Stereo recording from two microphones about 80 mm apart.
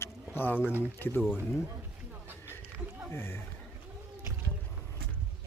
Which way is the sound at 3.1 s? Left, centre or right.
Left.